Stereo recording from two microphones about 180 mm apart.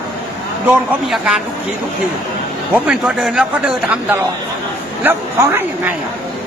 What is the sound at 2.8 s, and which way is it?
A man's voice, 5° right (ahead or behind).